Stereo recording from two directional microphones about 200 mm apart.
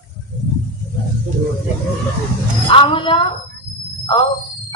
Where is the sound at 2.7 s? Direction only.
25° left (ahead or behind).